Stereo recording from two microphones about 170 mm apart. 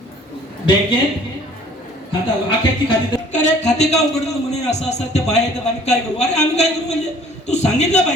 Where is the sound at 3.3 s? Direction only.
45° left (ahead or behind).